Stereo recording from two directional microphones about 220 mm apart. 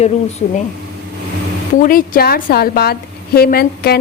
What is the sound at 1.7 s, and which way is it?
A woman's voice, 40° left (ahead or behind).